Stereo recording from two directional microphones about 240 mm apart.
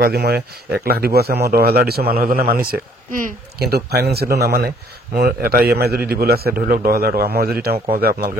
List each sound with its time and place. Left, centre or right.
0.0 s speech: right